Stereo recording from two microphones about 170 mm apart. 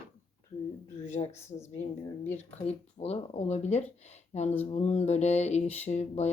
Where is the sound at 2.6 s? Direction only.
35° left (ahead or behind).